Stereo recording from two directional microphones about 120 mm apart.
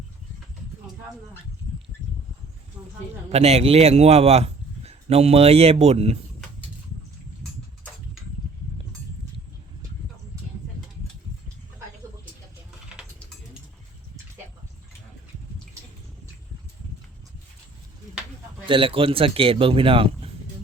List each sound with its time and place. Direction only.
2.8 s speech: 10° right (ahead or behind)
3.2 s speech: 60° right (ahead or behind)
10.3 s a sound: 30° right (ahead or behind)
18.6 s speech: 45° right (ahead or behind)